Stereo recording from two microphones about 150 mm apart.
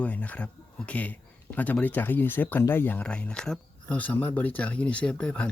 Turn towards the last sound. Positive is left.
turn(degrees=5)  # may be behind; listen again after turning